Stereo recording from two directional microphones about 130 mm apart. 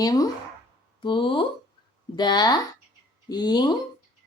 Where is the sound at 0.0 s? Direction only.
30° left (ahead or behind).